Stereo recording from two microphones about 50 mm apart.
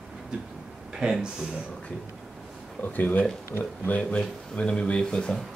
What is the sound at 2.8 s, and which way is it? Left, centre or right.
Speech, left.